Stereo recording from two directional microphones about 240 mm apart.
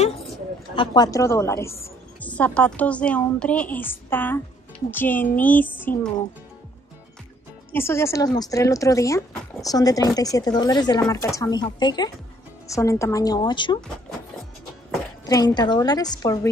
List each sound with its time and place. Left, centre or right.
0.7 s speech: centre
7.7 s speech: centre
15.2 s speech: centre